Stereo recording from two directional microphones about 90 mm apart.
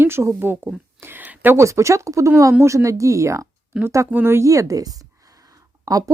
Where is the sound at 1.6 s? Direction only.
35° right (ahead or behind).